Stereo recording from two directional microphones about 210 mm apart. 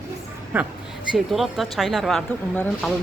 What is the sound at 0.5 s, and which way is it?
A woman's voice, 10° right (ahead or behind).